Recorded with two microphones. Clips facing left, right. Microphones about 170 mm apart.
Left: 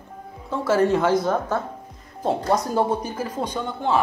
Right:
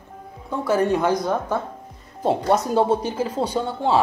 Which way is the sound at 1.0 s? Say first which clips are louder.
Left 1 dB; 15° right (ahead or behind).